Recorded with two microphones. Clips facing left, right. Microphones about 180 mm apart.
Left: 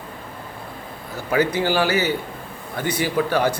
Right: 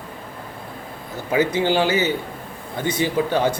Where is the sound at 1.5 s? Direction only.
20° right (ahead or behind).